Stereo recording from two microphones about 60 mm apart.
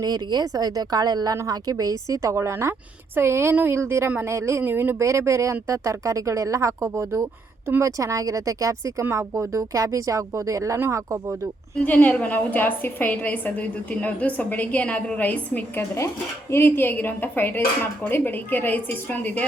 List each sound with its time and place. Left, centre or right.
0.5 s a woman's voice: right
2.3 s speech: right
4.9 s speech: right
7.8 s speech: right
9.1 s speech: right
11.8 s a woman's voice: left
16.5 s a woman's voice: left